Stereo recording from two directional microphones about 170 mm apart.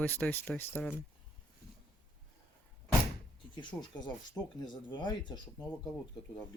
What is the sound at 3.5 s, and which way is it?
Speech, 25° left (ahead or behind).